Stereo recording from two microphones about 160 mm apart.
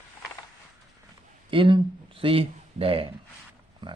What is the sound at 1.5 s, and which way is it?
Speech, 35° right (ahead or behind).